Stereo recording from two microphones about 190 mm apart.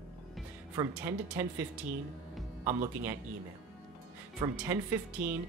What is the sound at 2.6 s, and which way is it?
Speech, 40° right (ahead or behind).